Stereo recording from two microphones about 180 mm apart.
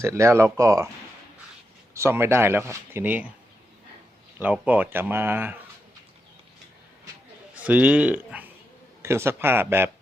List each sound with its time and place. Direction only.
0.0 s speech: 15° right (ahead or behind)
1.9 s speech: 15° right (ahead or behind)
4.4 s speech: 10° right (ahead or behind)
7.5 s a man's voice: 10° right (ahead or behind)